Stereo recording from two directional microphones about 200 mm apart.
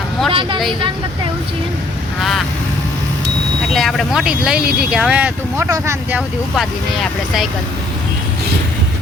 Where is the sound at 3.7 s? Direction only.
Centre (ahead or behind).